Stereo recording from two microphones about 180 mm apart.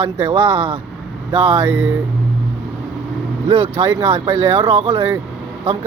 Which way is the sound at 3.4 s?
30° right (ahead or behind).